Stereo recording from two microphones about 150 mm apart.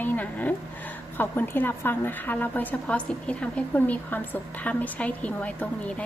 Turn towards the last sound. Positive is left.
turn(degrees=10)  # may be behind; listen again after turning